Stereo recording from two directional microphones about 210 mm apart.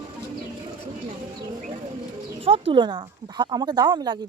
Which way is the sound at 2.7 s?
20° right (ahead or behind).